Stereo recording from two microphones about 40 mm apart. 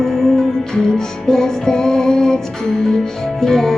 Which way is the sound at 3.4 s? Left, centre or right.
Centre.